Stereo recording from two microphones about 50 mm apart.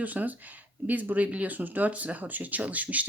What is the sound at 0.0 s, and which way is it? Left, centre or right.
Speech, right.